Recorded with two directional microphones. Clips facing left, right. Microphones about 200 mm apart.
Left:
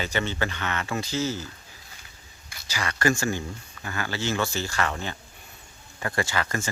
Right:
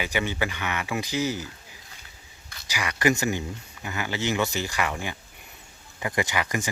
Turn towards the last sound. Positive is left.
turn(degrees=-15)  # may be behind; listen again after turning